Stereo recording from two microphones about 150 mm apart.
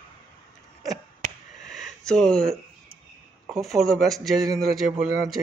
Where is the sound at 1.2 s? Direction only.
55° right (ahead or behind).